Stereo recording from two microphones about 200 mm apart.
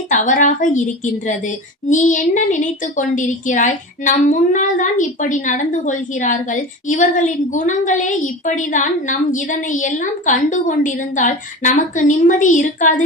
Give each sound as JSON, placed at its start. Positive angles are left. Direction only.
{"t": 0.1, "sound": "a woman's voice", "side_deg": 40}